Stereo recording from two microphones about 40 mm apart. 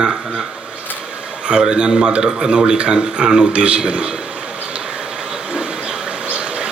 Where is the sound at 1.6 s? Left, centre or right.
Centre.